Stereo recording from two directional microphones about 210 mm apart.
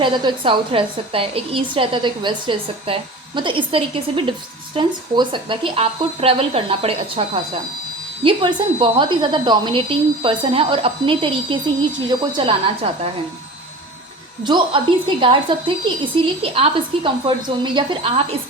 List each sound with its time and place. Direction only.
0.0 s a woman's voice: 20° right (ahead or behind)
14.4 s a woman's voice: 20° right (ahead or behind)